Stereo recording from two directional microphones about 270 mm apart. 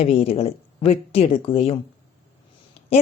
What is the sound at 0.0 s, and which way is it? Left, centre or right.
Speech, left.